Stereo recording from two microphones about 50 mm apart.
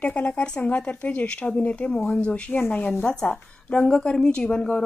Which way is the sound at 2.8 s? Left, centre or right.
Left.